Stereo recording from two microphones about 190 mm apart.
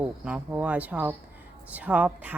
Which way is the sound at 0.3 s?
5° right (ahead or behind).